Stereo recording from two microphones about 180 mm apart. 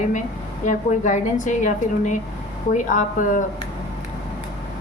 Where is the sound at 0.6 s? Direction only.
45° left (ahead or behind).